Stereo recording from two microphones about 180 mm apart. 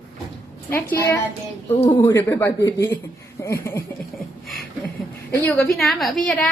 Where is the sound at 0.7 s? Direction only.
10° left (ahead or behind).